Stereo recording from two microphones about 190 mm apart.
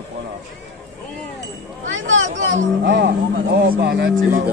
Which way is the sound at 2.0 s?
85° right.